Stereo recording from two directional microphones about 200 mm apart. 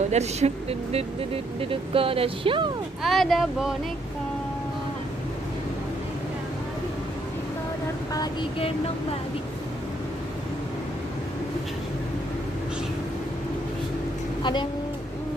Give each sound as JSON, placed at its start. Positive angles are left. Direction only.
{"t": 0.1, "sound": "speech", "side_deg": -35}
{"t": 3.0, "sound": "speech", "side_deg": 0}
{"t": 8.1, "sound": "speech", "side_deg": 25}
{"t": 14.4, "sound": "a woman's voice", "side_deg": 25}